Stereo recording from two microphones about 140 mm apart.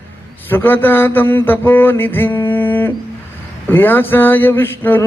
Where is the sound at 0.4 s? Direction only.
15° left (ahead or behind).